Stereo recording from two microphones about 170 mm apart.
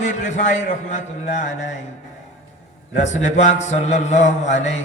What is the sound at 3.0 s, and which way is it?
A man's voice, 45° left (ahead or behind).